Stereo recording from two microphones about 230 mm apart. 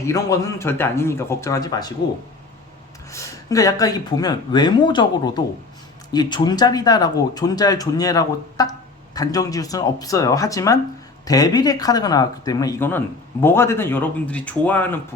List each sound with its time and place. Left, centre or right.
0.0 s speech: centre
3.1 s speech: centre